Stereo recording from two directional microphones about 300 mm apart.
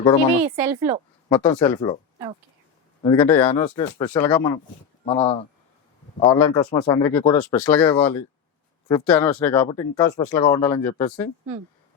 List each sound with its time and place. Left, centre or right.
0.4 s speech: centre
1.3 s speech: centre
1.6 s speech: centre
3.0 s speech: centre
7.3 s speech: centre
7.6 s speech: centre